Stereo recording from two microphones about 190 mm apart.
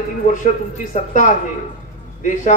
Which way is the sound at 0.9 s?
35° left (ahead or behind).